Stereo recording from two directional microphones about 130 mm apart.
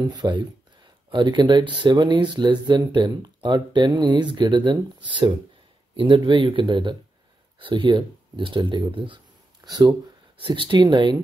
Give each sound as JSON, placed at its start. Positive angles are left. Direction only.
{"t": 0.0, "sound": "speech", "side_deg": -35}